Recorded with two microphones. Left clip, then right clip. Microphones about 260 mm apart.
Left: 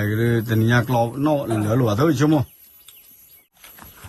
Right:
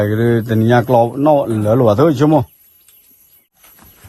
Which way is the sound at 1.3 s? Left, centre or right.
Right.